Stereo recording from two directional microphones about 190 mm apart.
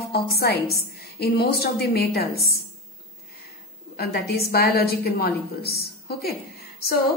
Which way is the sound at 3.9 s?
55° left (ahead or behind).